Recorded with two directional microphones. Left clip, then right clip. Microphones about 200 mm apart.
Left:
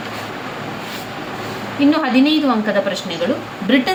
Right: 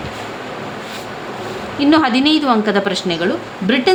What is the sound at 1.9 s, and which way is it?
A woman's voice, 50° right (ahead or behind).